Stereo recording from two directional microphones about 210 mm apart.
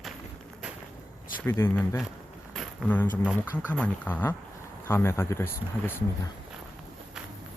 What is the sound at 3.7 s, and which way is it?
Speech, 5° left (ahead or behind).